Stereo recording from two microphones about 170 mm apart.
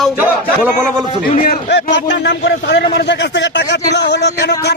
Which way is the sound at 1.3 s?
50° left (ahead or behind).